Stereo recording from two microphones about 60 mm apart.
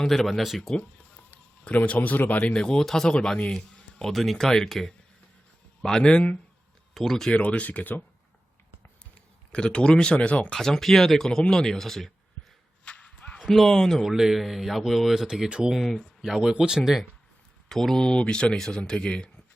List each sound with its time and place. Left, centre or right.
0.0 s speech: centre
1.8 s speech: left
2.4 s speech: centre
6.9 s speech: centre
7.3 s speech: left
9.5 s speech: centre
10.6 s speech: centre
12.8 s whip: centre
13.5 s speech: centre
15.4 s speech: centre
15.7 s speech: centre
17.7 s speech: centre